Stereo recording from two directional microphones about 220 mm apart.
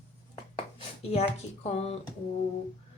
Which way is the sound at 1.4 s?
30° left (ahead or behind).